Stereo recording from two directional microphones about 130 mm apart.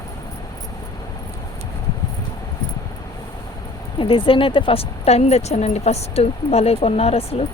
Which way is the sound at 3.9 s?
40° left (ahead or behind).